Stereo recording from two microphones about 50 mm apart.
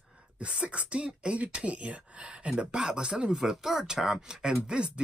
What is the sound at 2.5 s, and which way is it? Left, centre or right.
Speech, centre.